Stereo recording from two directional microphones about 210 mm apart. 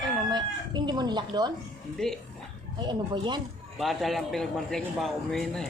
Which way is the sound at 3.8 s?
Centre (ahead or behind).